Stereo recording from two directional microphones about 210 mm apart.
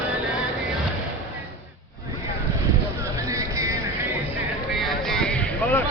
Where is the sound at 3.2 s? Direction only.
15° right (ahead or behind).